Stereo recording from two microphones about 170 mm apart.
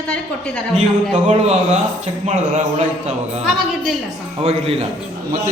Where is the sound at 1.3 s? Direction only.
40° right (ahead or behind).